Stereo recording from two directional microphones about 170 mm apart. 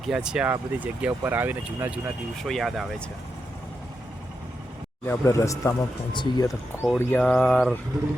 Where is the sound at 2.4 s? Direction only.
Centre (ahead or behind).